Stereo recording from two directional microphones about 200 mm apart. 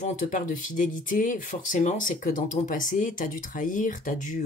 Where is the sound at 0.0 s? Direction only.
40° left (ahead or behind).